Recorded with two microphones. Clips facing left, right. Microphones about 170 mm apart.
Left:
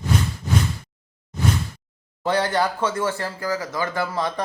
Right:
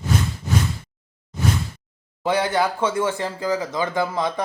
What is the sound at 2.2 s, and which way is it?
Speech, 10° right (ahead or behind).